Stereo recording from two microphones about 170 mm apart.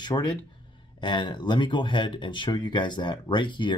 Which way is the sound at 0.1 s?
25° left (ahead or behind).